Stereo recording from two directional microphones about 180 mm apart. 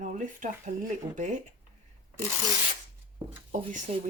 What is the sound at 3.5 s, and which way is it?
Dishes, 45° right (ahead or behind).